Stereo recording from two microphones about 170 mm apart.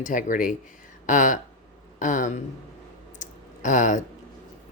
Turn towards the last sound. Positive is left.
turn(degrees=45)  # may be behind; listen again after turning